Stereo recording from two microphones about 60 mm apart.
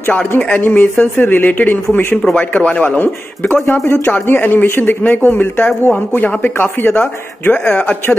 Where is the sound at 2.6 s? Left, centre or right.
Left.